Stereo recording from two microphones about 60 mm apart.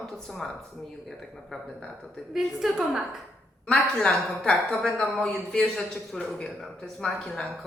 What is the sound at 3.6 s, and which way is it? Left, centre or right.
Speech, centre.